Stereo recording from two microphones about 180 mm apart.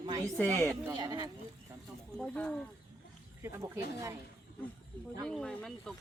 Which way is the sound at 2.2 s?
5° left (ahead or behind).